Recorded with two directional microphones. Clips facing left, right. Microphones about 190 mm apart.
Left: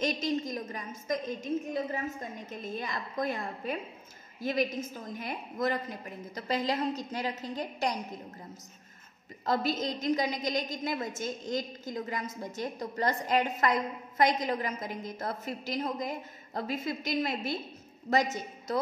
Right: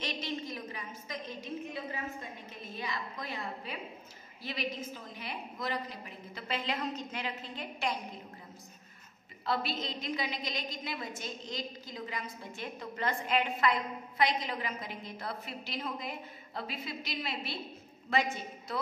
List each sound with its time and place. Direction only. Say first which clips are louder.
0.0 s a woman's voice: left 7 dB; 45° left (ahead or behind)
9.4 s a woman's voice: left 5 dB; 45° left (ahead or behind)